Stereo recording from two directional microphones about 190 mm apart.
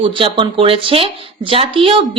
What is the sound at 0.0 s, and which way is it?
Speech, 25° right (ahead or behind).